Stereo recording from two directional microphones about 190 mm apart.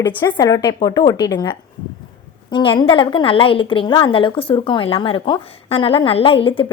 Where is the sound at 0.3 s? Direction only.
20° left (ahead or behind).